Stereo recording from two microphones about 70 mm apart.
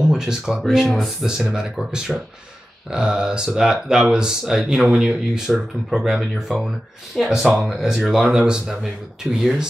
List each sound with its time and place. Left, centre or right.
0.0 s speech: centre
0.8 s speech: centre
1.2 s speech: centre